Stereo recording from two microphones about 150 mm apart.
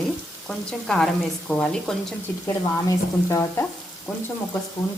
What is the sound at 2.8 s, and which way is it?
Frying, 20° left (ahead or behind).